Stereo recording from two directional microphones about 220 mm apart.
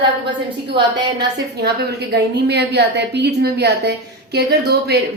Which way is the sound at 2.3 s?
50° right (ahead or behind).